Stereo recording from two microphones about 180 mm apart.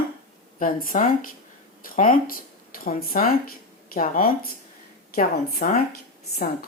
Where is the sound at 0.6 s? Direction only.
50° left (ahead or behind).